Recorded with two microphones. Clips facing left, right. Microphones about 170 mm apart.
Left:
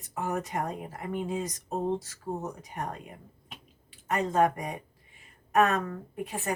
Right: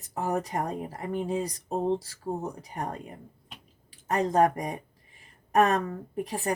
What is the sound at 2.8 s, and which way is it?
Speech, 35° right (ahead or behind).